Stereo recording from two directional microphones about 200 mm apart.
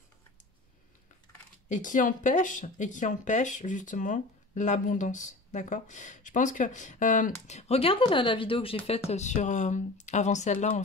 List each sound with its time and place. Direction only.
1.7 s speech: 40° left (ahead or behind)